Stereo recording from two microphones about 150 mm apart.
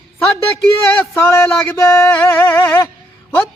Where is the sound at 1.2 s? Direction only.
15° left (ahead or behind).